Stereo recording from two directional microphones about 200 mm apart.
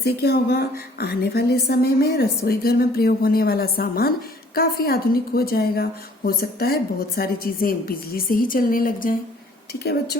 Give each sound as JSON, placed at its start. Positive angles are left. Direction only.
{"t": 0.0, "sound": "a woman's voice", "side_deg": 50}